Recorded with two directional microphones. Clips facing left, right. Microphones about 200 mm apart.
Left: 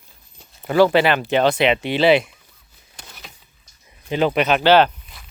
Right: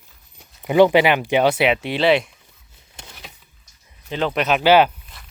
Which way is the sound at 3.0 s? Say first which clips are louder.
Right 1 dB; 10° right (ahead or behind).